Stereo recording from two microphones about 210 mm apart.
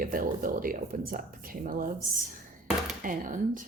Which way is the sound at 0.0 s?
40° right (ahead or behind).